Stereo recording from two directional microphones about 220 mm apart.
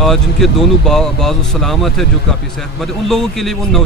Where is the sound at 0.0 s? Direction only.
Centre (ahead or behind).